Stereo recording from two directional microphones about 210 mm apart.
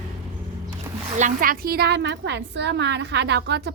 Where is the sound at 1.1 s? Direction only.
40° right (ahead or behind).